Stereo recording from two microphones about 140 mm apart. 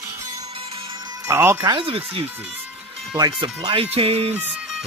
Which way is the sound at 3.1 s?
30° right (ahead or behind).